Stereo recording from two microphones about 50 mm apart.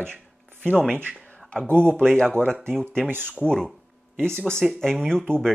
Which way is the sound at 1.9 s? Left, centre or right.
Centre.